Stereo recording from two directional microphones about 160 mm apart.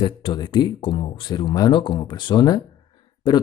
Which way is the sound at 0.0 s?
30° left (ahead or behind).